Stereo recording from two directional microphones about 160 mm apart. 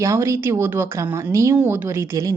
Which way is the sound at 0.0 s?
20° right (ahead or behind).